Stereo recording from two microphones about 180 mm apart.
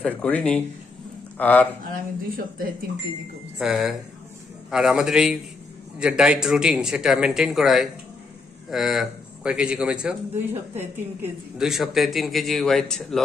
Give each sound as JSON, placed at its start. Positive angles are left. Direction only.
{"t": 0.0, "sound": "speech", "side_deg": 5}
{"t": 1.9, "sound": "speech", "side_deg": -55}
{"t": 3.5, "sound": "speech", "side_deg": 0}